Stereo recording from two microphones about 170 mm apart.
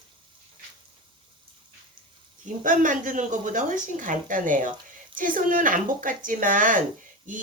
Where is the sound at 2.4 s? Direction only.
50° right (ahead or behind).